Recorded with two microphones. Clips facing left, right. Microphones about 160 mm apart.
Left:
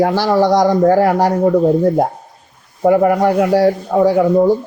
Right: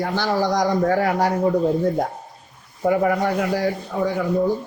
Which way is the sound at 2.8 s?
55° left (ahead or behind).